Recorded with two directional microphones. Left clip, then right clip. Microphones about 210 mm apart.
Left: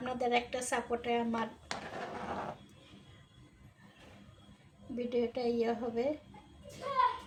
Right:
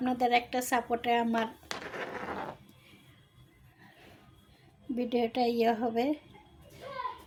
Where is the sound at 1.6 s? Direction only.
25° right (ahead or behind).